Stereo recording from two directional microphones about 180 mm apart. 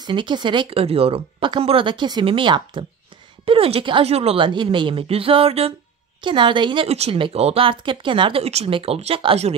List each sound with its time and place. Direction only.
0.0 s a woman's voice: 25° right (ahead or behind)